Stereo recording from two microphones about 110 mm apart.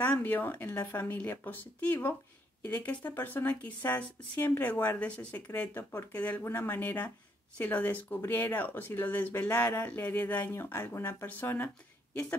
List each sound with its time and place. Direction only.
0.0 s speech: 15° left (ahead or behind)